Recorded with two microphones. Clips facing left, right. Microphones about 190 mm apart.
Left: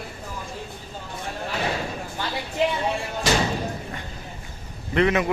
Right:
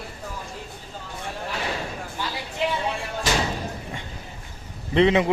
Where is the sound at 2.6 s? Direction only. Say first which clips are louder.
Left 3 dB; 45° left (ahead or behind).